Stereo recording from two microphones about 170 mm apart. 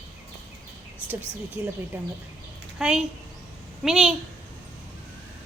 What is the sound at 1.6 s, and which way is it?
Speech, 30° left (ahead or behind).